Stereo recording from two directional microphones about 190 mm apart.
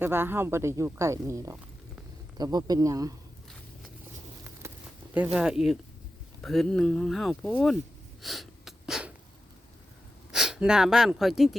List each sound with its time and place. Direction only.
0.0 s speech: 10° right (ahead or behind)
4.6 s a sound: 15° right (ahead or behind)
5.1 s speech: 5° right (ahead or behind)
8.2 s sneeze: centre (ahead or behind)
10.3 s speech: centre (ahead or behind)